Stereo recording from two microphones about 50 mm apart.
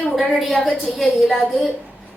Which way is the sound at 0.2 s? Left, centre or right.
Centre.